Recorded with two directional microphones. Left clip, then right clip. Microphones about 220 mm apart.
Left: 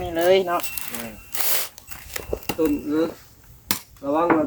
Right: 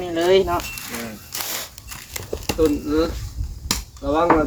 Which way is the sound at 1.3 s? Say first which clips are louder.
Left 1 dB; 20° left (ahead or behind).